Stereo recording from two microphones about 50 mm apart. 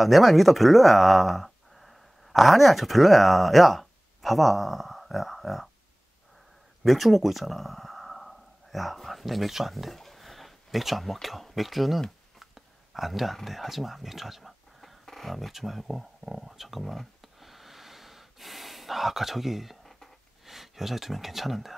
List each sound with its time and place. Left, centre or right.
0.0 s speech: centre
6.8 s speech: centre
12.4 s a sound: centre